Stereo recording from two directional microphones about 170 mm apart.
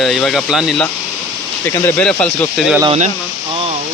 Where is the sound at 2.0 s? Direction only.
5° left (ahead or behind).